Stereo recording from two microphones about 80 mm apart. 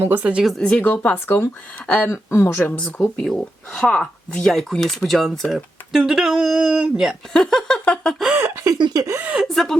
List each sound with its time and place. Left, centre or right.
0.0 s speech: right
0.6 s speech: centre
2.0 s speech: left
3.2 s speech: centre
7.3 s a sound: centre
8.4 s a sound: right
8.8 s speech: right
9.2 s speech: centre
9.5 s speech: centre